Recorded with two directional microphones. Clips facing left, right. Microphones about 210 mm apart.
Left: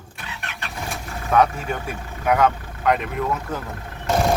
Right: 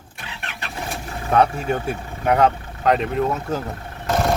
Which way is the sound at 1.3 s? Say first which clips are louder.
Right 1 dB; 30° right (ahead or behind).